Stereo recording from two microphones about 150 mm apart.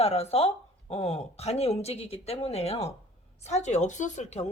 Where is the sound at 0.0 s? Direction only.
40° left (ahead or behind).